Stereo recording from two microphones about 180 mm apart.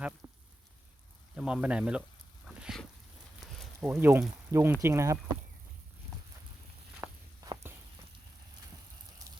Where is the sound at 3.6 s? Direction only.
5° right (ahead or behind).